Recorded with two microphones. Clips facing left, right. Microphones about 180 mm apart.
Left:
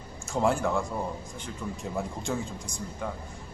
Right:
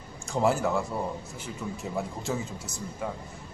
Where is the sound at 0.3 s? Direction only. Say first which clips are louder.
Right 1 dB; centre (ahead or behind).